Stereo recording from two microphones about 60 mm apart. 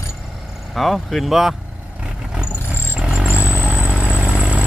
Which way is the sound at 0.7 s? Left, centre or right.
Centre.